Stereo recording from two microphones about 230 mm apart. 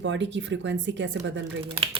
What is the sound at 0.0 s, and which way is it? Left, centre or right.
Speech, right.